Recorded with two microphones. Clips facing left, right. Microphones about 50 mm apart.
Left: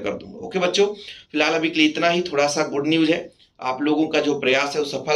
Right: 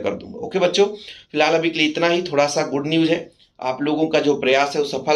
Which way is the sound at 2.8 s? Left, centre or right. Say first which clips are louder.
Even; left.